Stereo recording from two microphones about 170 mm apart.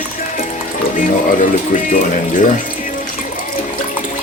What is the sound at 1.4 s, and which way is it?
Speech, 50° left (ahead or behind).